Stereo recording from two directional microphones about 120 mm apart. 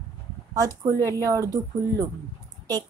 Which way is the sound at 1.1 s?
25° right (ahead or behind).